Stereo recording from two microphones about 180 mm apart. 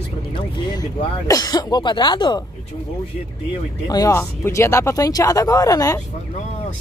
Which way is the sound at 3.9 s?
20° left (ahead or behind).